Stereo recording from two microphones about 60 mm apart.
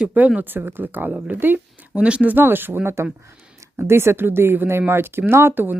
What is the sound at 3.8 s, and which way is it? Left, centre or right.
Speech, right.